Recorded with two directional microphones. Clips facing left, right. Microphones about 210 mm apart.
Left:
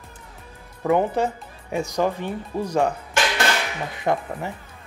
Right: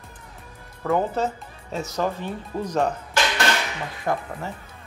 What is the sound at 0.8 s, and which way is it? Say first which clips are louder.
Speech: left 3 dB; 15° left (ahead or behind).